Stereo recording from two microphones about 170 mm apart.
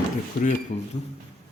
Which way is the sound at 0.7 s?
40° left (ahead or behind).